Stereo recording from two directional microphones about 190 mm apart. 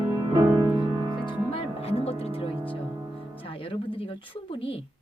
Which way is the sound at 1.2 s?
25° left (ahead or behind).